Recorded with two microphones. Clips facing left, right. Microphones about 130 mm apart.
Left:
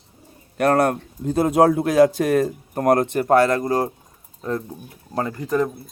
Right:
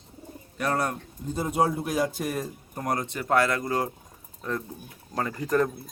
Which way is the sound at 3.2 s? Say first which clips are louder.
Left 6 dB; 35° left (ahead or behind).